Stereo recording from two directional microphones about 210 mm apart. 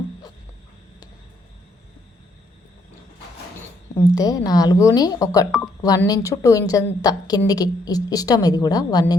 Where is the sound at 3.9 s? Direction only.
15° left (ahead or behind).